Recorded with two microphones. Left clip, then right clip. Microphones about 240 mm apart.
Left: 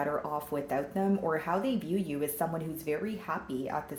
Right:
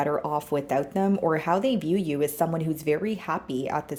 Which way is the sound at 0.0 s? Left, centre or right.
Right.